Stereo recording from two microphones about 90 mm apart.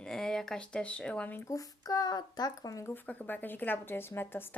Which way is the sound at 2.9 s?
20° left (ahead or behind).